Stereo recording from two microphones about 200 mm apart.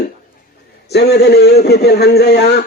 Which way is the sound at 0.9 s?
55° left (ahead or behind).